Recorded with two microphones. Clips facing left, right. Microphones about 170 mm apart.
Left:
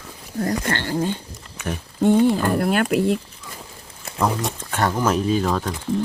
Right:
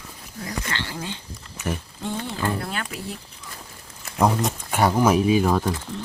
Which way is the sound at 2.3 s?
55° left (ahead or behind).